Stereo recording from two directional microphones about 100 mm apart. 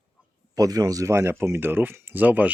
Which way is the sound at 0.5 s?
40° right (ahead or behind).